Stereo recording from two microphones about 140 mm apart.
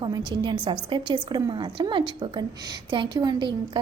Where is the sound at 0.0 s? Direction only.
35° right (ahead or behind).